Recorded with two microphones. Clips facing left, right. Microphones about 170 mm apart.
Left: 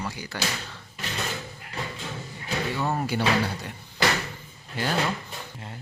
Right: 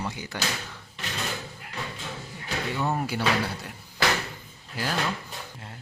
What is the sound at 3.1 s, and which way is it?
Speech, 5° right (ahead or behind).